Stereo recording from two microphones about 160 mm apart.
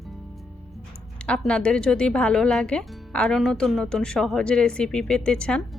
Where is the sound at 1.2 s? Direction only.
5° left (ahead or behind).